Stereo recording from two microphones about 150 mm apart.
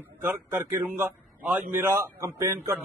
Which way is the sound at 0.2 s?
15° right (ahead or behind).